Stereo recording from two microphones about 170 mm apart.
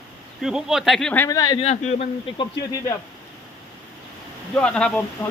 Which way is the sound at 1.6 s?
40° left (ahead or behind).